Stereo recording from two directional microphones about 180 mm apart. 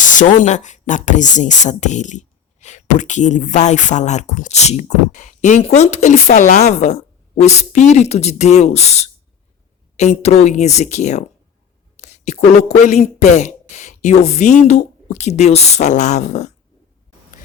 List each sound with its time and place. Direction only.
0.0 s speech: 45° left (ahead or behind)